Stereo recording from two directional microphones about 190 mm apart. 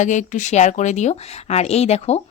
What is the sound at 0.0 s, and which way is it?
Speech, 40° left (ahead or behind).